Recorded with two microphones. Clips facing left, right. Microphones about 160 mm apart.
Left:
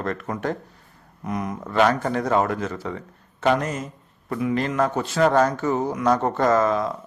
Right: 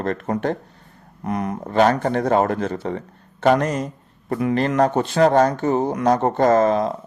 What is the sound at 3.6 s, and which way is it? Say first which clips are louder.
Speech: right 5 dB; 60° right (ahead or behind).